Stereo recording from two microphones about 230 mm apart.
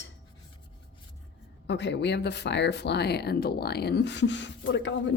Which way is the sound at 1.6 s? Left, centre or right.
Left.